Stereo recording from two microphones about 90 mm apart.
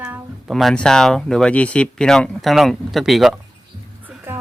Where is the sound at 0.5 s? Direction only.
5° left (ahead or behind).